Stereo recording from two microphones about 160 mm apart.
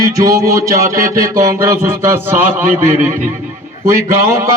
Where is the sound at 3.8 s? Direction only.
15° right (ahead or behind).